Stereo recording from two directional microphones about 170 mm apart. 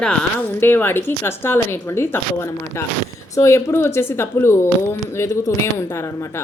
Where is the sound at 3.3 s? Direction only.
15° left (ahead or behind).